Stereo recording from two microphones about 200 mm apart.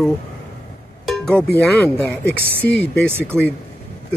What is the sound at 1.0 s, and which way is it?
Music, centre (ahead or behind).